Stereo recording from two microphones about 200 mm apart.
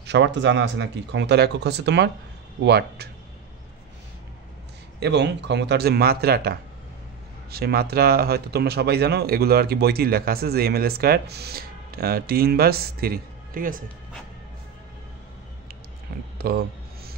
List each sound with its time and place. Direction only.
0.0 s speech: 60° right (ahead or behind)
5.0 s speech: 60° right (ahead or behind)
16.3 s a sound: 50° right (ahead or behind)